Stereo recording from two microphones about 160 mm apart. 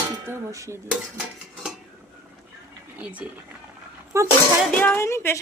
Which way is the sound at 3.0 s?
10° right (ahead or behind).